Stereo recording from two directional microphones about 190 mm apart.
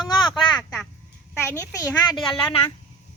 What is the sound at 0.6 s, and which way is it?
Speech, 5° left (ahead or behind).